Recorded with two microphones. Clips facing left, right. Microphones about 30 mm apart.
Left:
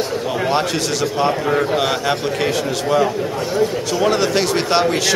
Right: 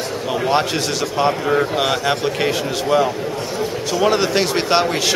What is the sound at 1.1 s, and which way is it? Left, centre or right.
A man's voice, centre.